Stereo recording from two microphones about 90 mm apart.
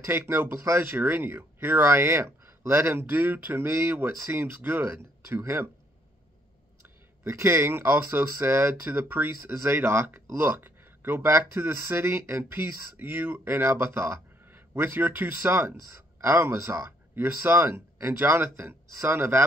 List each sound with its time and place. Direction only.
0.0 s speech: 25° right (ahead or behind)
7.2 s speech: 30° right (ahead or behind)